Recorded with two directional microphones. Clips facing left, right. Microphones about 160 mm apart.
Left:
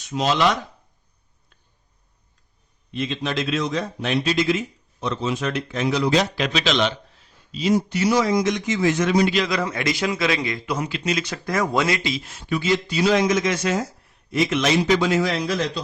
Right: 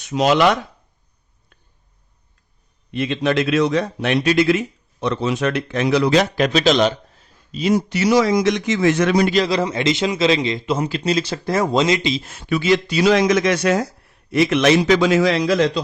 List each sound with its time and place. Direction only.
0.0 s speech: 70° right (ahead or behind)
2.9 s a man's voice: 65° right (ahead or behind)
6.3 s a man's voice: 45° right (ahead or behind)
7.6 s a man's voice: 75° right (ahead or behind)
9.3 s a man's voice: 35° right (ahead or behind)
9.6 s speech: 25° right (ahead or behind)
10.8 s speech: 35° right (ahead or behind)
12.2 s a man's voice: 60° right (ahead or behind); by 15.8 s 90° right